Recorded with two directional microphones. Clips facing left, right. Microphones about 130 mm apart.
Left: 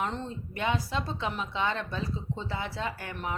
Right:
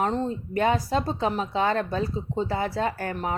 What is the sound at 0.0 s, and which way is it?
Speech, 40° right (ahead or behind).